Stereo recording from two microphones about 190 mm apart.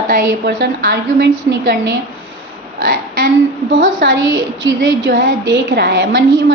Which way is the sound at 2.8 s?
50° right (ahead or behind).